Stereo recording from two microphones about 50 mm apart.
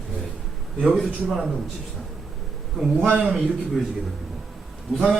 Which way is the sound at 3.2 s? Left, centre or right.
Centre.